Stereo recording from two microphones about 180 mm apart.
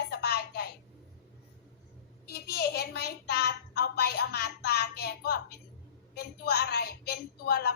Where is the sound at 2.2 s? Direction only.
60° left (ahead or behind).